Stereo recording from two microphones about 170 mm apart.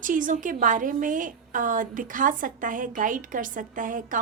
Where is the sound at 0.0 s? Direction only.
50° right (ahead or behind).